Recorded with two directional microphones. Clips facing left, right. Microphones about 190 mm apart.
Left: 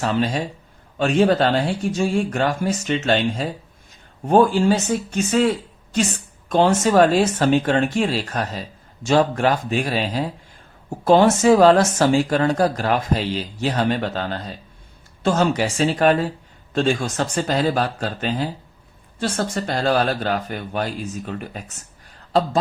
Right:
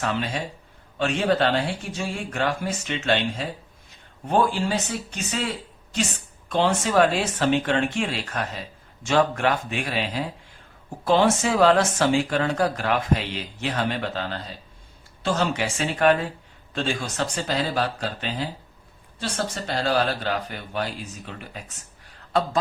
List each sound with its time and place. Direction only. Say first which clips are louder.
0.0 s speech: left 6 dB; 35° left (ahead or behind)